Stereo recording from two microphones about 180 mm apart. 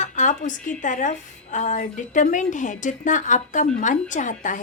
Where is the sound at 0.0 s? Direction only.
45° left (ahead or behind).